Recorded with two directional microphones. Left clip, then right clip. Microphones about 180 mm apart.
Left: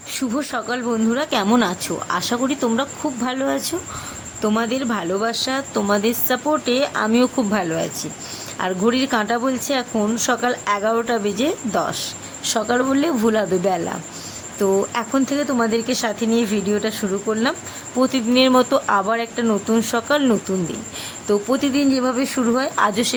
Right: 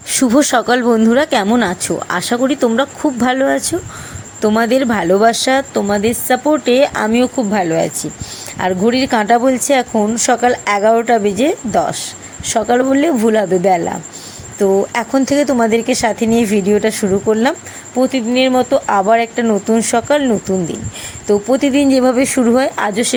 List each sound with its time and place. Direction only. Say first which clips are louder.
0.2 s speech: right 12 dB; 35° right (ahead or behind)
5.7 s a woman's voice: right 4 dB; 15° right (ahead or behind)
7.1 s a woman's voice: right 4 dB; 10° right (ahead or behind)
17.9 s speech: right 4 dB; 5° right (ahead or behind)
18.9 s a woman's voice: right 7 dB; 20° right (ahead or behind)
21.5 s speech: right 9 dB; 15° right (ahead or behind)